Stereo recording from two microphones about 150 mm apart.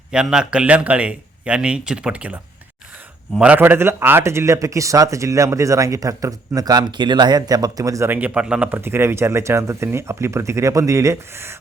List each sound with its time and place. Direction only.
0.1 s a man's voice: 5° right (ahead or behind)